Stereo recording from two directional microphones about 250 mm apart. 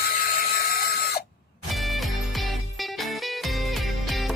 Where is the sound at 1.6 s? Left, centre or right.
Centre.